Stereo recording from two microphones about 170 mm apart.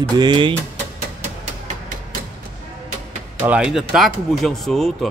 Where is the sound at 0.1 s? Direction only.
25° right (ahead or behind).